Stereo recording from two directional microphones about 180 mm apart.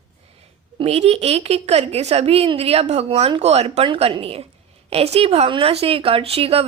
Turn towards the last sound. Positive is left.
turn(degrees=-35)  # may be behind; listen again after turning